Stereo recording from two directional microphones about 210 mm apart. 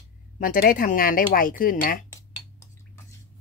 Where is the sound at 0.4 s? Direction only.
40° left (ahead or behind).